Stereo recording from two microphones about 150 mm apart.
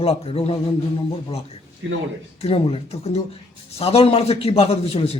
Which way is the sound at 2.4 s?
40° left (ahead or behind).